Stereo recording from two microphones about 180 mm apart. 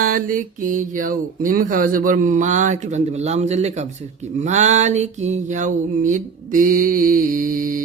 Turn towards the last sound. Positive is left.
turn(degrees=-50)  # may be behind; listen again after turning